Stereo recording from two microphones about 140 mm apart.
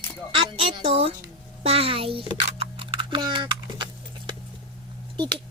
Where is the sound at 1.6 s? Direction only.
45° right (ahead or behind).